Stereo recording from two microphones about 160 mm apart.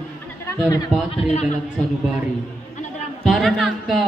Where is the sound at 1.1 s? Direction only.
45° left (ahead or behind).